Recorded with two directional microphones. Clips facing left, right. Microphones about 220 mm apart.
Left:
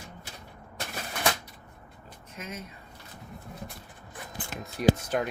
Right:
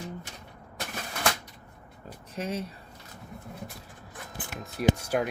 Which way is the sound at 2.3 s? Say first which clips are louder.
Right 8 dB; 30° right (ahead or behind).